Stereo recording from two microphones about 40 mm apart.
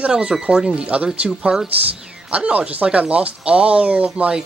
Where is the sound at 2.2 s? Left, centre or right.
Right.